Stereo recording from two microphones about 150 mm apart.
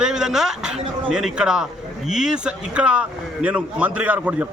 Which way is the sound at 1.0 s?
5° right (ahead or behind).